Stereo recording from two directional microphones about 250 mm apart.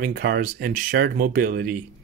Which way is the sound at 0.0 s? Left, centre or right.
Right.